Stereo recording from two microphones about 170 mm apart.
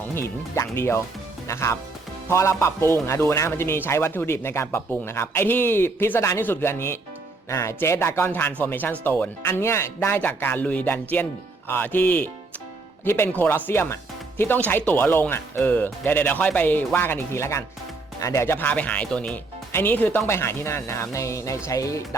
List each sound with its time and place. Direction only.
0.0 s a man's voice: 15° left (ahead or behind)